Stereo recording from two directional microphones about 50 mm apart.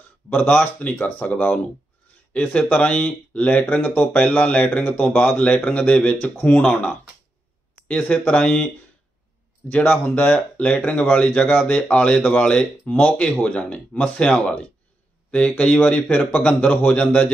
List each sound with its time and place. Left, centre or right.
0.3 s speech: left
9.7 s speech: left